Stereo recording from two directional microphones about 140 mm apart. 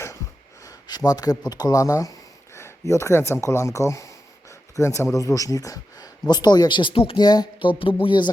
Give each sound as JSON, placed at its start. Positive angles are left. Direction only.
{"t": 0.6, "sound": "speech", "side_deg": 25}